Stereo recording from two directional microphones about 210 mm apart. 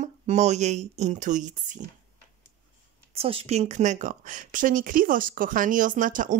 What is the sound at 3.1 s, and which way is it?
Speech, 30° right (ahead or behind).